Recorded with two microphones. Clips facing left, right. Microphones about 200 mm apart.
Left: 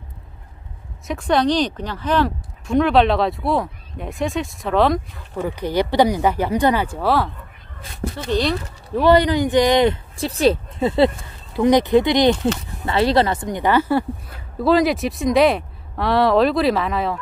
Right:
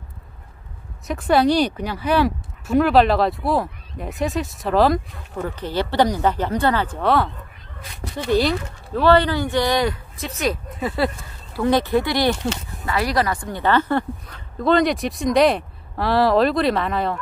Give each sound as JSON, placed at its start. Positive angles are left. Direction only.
{"t": 1.0, "sound": "speech", "side_deg": -5}
{"t": 5.6, "sound": "speech", "side_deg": 15}
{"t": 8.3, "sound": "speech", "side_deg": -5}
{"t": 8.9, "sound": "speech", "side_deg": 15}